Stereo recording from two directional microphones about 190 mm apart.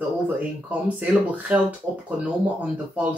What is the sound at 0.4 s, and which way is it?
Speech, 5° right (ahead or behind).